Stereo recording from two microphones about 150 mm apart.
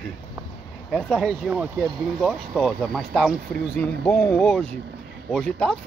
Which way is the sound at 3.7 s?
15° left (ahead or behind).